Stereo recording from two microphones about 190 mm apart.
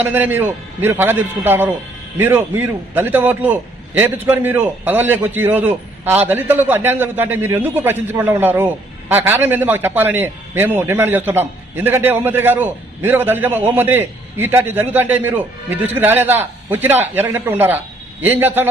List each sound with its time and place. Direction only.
0.0 s a man's voice: 10° right (ahead or behind)